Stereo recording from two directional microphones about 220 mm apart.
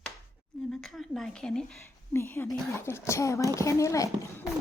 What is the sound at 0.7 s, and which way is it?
A woman's voice, centre (ahead or behind).